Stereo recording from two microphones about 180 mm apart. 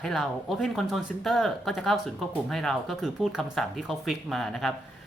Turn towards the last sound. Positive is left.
turn(degrees=0)  # may be behind; listen again after turning